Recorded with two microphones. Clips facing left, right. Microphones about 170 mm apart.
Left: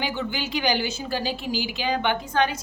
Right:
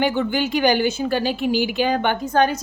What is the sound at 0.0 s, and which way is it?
A woman's voice, 55° right (ahead or behind).